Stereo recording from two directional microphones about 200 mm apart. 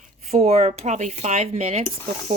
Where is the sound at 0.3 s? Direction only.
30° right (ahead or behind).